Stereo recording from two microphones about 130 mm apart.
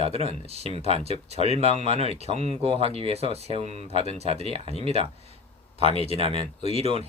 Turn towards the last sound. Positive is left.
turn(degrees=-50)  # may be behind; listen again after turning